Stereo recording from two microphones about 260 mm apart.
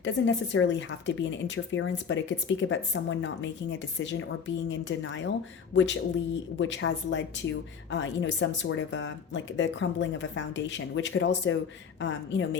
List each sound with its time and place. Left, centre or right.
0.0 s speech: left